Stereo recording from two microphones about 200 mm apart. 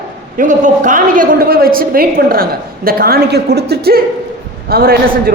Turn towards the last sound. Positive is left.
turn(degrees=-50)  # may be behind; listen again after turning